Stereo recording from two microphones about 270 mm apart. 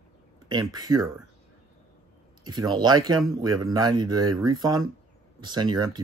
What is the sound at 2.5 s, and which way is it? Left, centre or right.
Speech, centre.